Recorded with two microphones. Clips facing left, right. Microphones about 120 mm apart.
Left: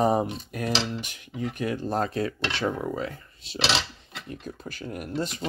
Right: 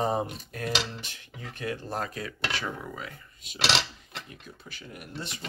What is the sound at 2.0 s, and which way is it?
Speech, 30° left (ahead or behind).